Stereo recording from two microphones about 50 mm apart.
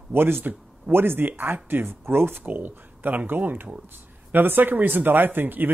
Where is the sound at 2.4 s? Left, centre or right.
Right.